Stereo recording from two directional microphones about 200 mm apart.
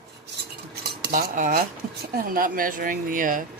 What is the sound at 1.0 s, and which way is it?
A woman's voice, 45° right (ahead or behind).